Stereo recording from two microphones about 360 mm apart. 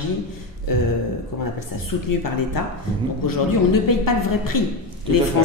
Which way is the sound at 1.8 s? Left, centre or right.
Left.